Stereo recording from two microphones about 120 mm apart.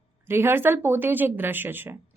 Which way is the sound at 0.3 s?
20° right (ahead or behind).